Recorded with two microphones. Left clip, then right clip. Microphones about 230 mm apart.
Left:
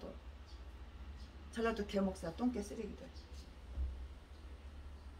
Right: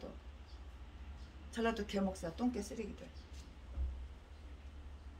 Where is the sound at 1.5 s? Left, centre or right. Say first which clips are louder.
Right 1 dB; centre.